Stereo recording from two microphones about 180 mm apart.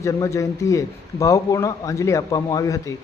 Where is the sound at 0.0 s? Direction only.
15° left (ahead or behind).